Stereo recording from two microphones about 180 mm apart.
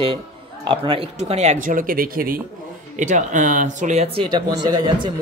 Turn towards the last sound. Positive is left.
turn(degrees=-25)  # may be behind; listen again after turning